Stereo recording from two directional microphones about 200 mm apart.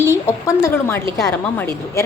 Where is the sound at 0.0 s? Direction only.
10° left (ahead or behind).